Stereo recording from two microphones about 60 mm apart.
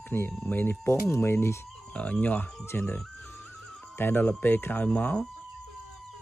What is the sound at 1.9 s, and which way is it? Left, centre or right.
Speech, left.